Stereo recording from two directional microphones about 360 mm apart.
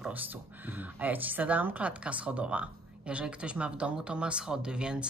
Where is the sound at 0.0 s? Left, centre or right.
Centre.